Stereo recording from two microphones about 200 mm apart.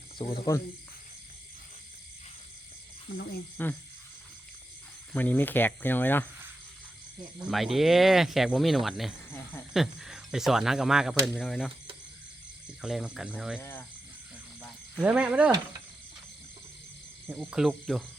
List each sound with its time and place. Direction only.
0.2 s speech: 20° left (ahead or behind)
3.6 s cricket: 10° left (ahead or behind)
5.1 s cricket: 10° left (ahead or behind)
7.4 s speech: centre (ahead or behind)
9.3 s cricket: 10° left (ahead or behind)
9.7 s speech: centre (ahead or behind)
12.8 s speech: centre (ahead or behind)
13.6 s cricket: 10° left (ahead or behind)
15.0 s speech: 5° right (ahead or behind)
17.2 s speech: centre (ahead or behind)